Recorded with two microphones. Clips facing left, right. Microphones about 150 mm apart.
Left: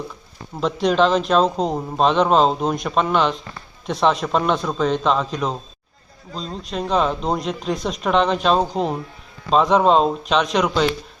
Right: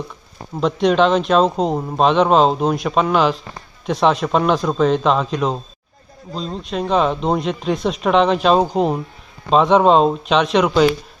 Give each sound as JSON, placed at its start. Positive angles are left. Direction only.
{"t": 0.6, "sound": "speech", "side_deg": 0}